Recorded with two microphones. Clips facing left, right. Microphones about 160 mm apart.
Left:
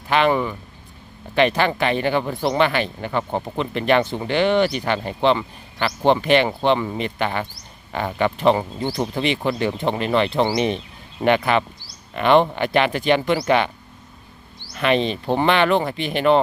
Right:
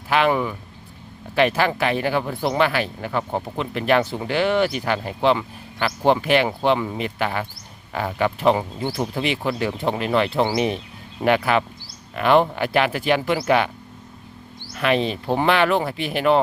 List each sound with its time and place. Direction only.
0.1 s speech: 5° right (ahead or behind)
14.7 s speech: 5° right (ahead or behind)